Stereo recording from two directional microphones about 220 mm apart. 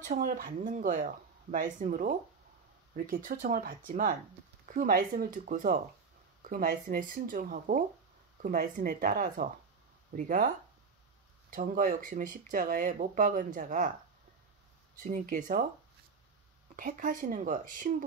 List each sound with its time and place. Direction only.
0.0 s speech: 40° right (ahead or behind)
11.5 s speech: 35° right (ahead or behind)
15.0 s speech: 35° right (ahead or behind)
16.7 s speech: 40° right (ahead or behind)